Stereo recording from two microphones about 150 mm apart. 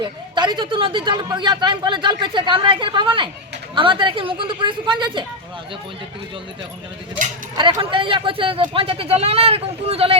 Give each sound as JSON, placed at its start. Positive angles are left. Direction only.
{"t": 0.0, "sound": "speech", "side_deg": -30}
{"t": 7.5, "sound": "speech", "side_deg": -30}